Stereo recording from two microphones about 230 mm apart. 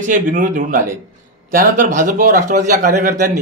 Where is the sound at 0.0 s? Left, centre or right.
Right.